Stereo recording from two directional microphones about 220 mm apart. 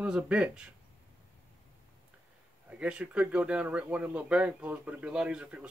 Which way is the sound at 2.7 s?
5° right (ahead or behind).